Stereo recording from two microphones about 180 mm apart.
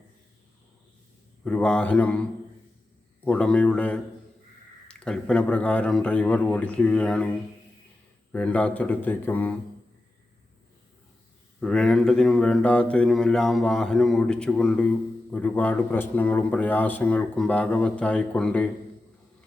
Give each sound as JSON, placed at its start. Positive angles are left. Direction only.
{"t": 1.5, "sound": "a man's voice", "side_deg": 5}
{"t": 3.2, "sound": "a man's voice", "side_deg": 5}
{"t": 8.3, "sound": "a man's voice", "side_deg": 5}
{"t": 11.6, "sound": "a man's voice", "side_deg": 5}